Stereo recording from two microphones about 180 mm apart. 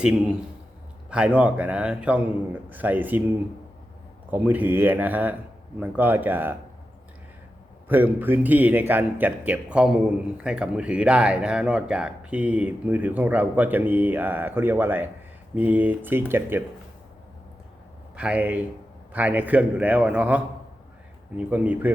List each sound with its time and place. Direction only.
1.1 s speech: 5° right (ahead or behind)
4.3 s speech: 10° right (ahead or behind)
7.9 s speech: 10° right (ahead or behind)
18.2 s speech: 10° right (ahead or behind)
21.5 s speech: 10° right (ahead or behind)